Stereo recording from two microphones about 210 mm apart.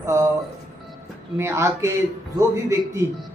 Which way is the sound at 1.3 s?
10° right (ahead or behind).